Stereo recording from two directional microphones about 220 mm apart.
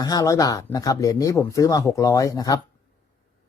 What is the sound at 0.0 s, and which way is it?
Speech, 15° left (ahead or behind).